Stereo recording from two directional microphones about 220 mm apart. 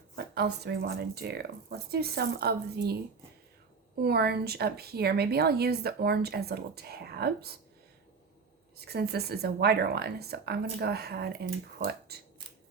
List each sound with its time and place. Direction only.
0.2 s a woman's voice: 45° right (ahead or behind)
4.0 s a woman's voice: 45° right (ahead or behind)
8.8 s a woman's voice: 45° right (ahead or behind)